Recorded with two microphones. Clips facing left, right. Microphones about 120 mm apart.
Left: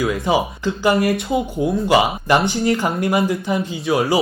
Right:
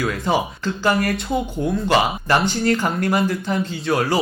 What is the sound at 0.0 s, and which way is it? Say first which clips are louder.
Speech: left 2 dB; 15° left (ahead or behind).